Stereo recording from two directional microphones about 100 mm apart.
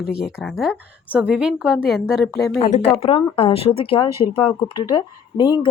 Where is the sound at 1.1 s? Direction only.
15° right (ahead or behind).